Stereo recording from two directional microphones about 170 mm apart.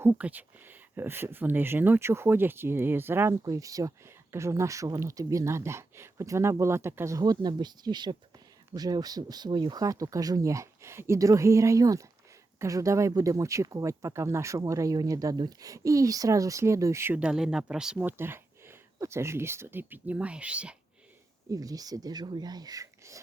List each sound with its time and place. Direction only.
0.0 s speech: 10° right (ahead or behind)
21.5 s speech: 20° right (ahead or behind)